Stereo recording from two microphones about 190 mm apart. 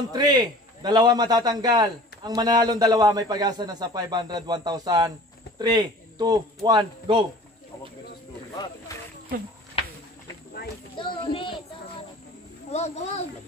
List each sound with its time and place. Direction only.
0.1 s a man's voice: 20° right (ahead or behind)
11.0 s a child's voice: 25° left (ahead or behind)
12.6 s speech: 35° left (ahead or behind)